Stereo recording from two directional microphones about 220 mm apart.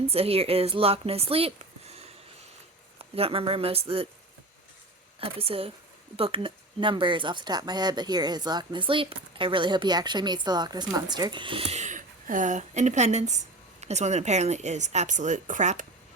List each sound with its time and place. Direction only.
0.1 s speech: 25° right (ahead or behind)
3.0 s speech: 25° right (ahead or behind)
5.2 s speech: 25° right (ahead or behind)